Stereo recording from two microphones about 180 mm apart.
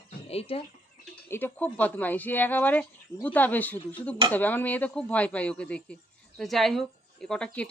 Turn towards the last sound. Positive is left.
turn(degrees=5)  # may be behind; listen again after turning